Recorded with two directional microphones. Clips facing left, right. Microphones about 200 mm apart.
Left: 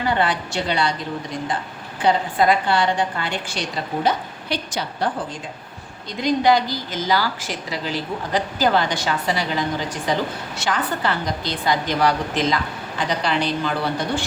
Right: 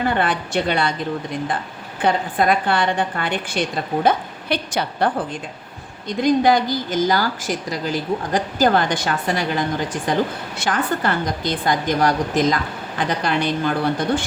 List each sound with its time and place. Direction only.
0.0 s a woman's voice: 55° right (ahead or behind)
2.0 s a woman's voice: 55° right (ahead or behind)